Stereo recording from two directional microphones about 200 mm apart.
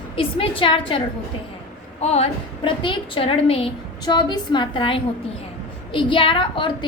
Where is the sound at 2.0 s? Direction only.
30° left (ahead or behind).